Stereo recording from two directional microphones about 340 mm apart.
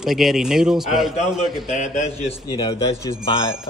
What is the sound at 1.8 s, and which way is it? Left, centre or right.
A man's voice, centre.